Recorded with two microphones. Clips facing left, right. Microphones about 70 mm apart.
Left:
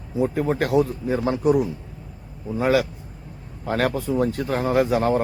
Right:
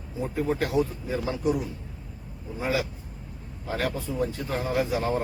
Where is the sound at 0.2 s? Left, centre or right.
Left.